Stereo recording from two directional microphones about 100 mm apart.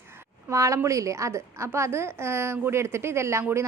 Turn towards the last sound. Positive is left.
turn(degrees=-30)  # may be behind; listen again after turning